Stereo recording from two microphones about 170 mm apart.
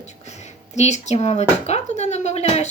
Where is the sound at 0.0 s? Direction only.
40° left (ahead or behind).